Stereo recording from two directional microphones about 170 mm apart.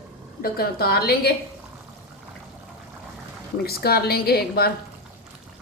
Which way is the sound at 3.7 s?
65° left (ahead or behind).